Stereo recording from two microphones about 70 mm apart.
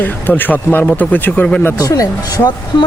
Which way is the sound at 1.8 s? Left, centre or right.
Left.